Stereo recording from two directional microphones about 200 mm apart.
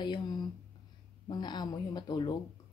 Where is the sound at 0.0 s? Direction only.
20° left (ahead or behind).